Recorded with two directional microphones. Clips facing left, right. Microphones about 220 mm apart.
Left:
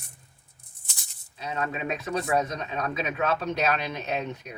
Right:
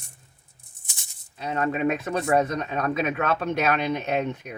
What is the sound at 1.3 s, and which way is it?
Speech, 50° right (ahead or behind).